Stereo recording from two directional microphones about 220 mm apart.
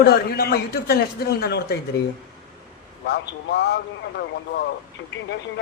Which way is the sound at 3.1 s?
50° left (ahead or behind).